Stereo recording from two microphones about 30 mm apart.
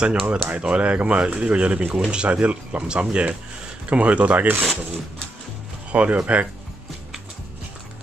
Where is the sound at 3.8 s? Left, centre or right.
Right.